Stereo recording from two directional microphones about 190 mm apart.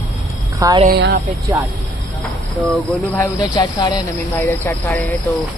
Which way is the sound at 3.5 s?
20° left (ahead or behind).